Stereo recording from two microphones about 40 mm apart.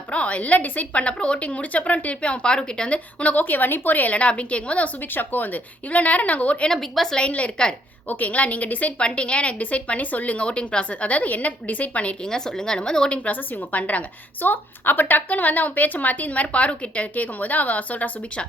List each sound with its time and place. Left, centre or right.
0.1 s a woman's voice: left
3.4 s a woman's voice: left
5.1 s a woman's voice: left
6.7 s a woman's voice: centre
7.2 s a woman's voice: left
8.0 s a woman's voice: left
9.0 s a woman's voice: left
11.1 s a woman's voice: left
12.2 s speech: centre
13.2 s a woman's voice: left
14.4 s a woman's voice: left